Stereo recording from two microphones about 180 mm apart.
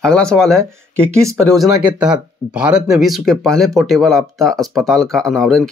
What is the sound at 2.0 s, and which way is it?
Speech, 5° right (ahead or behind).